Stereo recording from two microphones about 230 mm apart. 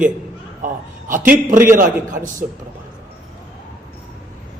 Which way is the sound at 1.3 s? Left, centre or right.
Right.